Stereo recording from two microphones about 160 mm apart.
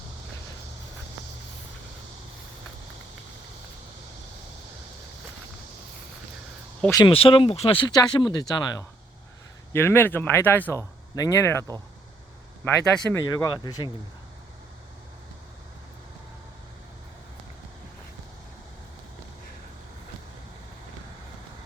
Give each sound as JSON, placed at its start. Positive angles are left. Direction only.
{"t": 7.1, "sound": "speech", "side_deg": 35}
{"t": 9.7, "sound": "speech", "side_deg": 15}
{"t": 12.6, "sound": "speech", "side_deg": 5}
{"t": 13.1, "sound": "speech", "side_deg": 25}